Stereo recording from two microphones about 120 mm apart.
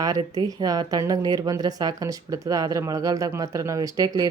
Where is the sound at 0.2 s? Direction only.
35° right (ahead or behind).